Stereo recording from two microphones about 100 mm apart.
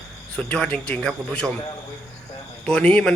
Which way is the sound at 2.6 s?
10° left (ahead or behind).